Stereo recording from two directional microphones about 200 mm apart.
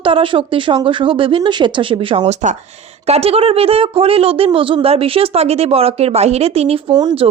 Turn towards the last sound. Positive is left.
turn(degrees=-25)  # may be behind; listen again after turning